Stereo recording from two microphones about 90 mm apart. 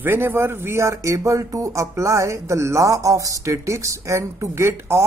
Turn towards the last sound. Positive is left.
turn(degrees=-30)  # may be behind; listen again after turning